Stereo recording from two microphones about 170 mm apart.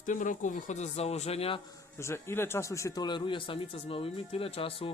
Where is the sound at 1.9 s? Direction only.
15° left (ahead or behind); by 4.9 s 35° left (ahead or behind).